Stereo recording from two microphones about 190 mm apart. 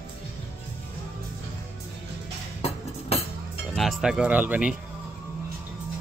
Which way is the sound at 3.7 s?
Centre (ahead or behind).